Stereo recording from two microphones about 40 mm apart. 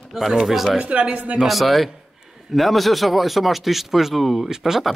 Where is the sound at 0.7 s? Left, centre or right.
Right.